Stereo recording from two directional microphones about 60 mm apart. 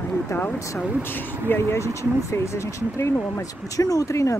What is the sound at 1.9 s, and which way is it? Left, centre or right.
Speech, left.